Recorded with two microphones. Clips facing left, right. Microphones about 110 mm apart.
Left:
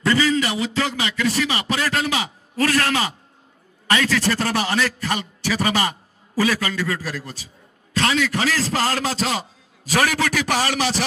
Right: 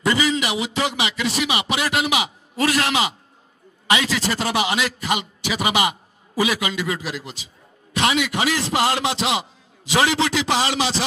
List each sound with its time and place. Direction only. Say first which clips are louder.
0.0 s a man's voice: left 1 dB; 15° right (ahead or behind)